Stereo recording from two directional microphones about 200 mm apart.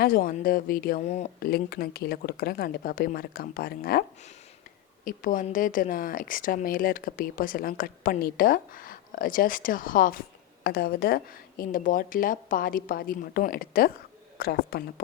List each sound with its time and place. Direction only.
0.0 s speech: 45° left (ahead or behind)
1.4 s speech: 50° left (ahead or behind)
5.0 s speech: 40° left (ahead or behind)